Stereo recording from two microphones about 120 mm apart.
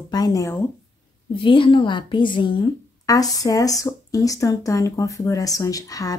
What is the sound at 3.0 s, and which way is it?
Speech, 30° left (ahead or behind).